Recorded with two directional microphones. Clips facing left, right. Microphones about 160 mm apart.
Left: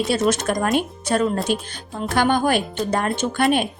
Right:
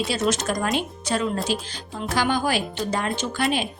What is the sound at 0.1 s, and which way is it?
A woman's voice, 55° left (ahead or behind).